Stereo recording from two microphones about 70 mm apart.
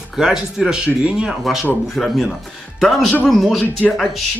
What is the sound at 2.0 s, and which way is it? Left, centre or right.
Speech, centre.